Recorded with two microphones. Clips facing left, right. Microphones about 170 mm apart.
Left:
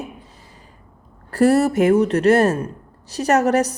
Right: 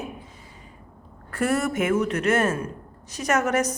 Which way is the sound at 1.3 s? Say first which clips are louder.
Left 9 dB; 35° left (ahead or behind).